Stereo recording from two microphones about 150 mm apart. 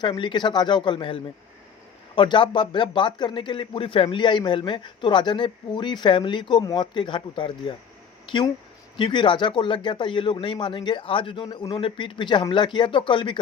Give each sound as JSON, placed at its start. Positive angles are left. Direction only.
{"t": 0.0, "sound": "speech", "side_deg": 35}